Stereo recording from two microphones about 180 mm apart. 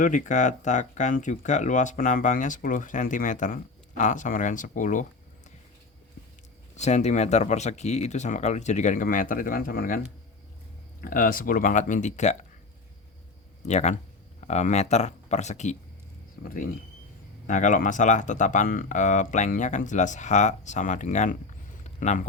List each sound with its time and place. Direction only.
0.0 s speech: 45° left (ahead or behind)
6.7 s speech: 40° left (ahead or behind)
11.0 s speech: 50° left (ahead or behind)
13.7 s speech: 40° left (ahead or behind)
17.4 s speech: 45° left (ahead or behind)
21.8 s a sound: 40° left (ahead or behind)